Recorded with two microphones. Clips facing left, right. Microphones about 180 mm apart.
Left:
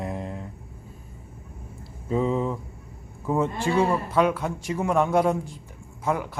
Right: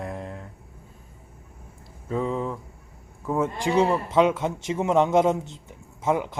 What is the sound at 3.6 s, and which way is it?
A man's voice, 20° right (ahead or behind).